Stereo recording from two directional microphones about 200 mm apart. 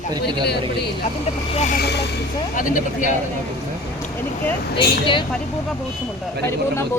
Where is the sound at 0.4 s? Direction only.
55° left (ahead or behind).